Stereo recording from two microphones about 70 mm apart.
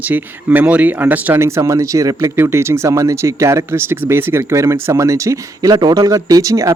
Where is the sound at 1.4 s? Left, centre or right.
Right.